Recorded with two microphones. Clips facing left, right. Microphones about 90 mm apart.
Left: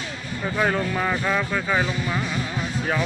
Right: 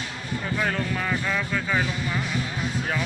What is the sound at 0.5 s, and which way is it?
Speech, 20° left (ahead or behind).